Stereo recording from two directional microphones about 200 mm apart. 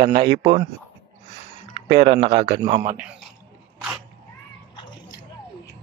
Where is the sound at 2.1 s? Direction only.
30° right (ahead or behind).